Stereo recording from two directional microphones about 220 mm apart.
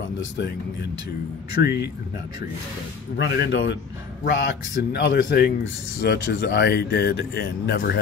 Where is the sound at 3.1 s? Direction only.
50° left (ahead or behind).